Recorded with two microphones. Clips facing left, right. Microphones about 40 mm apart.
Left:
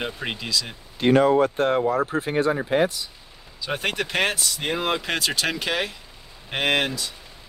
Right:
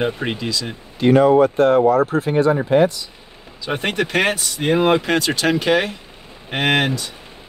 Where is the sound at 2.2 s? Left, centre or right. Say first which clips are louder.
Right 6 dB; centre.